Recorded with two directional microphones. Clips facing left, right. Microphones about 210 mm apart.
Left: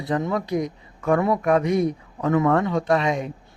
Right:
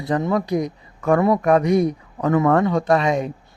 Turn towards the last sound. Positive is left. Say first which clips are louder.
# right 3 dB
turn(degrees=-40)  # may be behind; listen again after turning